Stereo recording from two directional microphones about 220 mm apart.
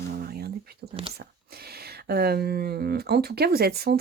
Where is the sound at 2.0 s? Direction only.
45° right (ahead or behind).